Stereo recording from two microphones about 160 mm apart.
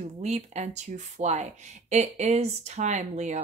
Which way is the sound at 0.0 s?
45° right (ahead or behind).